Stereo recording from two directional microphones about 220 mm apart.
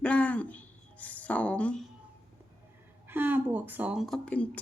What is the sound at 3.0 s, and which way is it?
Speech, 10° right (ahead or behind).